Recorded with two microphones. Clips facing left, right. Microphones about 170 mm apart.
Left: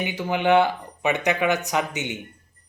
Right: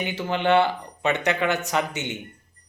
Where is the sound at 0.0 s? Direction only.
15° left (ahead or behind).